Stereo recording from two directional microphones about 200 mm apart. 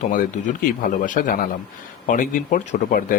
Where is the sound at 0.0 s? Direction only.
40° left (ahead or behind).